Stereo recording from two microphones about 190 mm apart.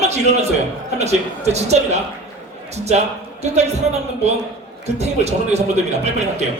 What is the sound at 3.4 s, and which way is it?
Speech, 35° right (ahead or behind).